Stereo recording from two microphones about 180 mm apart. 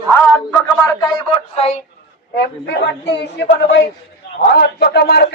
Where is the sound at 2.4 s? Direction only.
75° left (ahead or behind).